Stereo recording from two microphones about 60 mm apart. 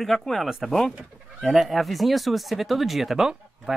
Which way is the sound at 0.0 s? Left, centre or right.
Centre.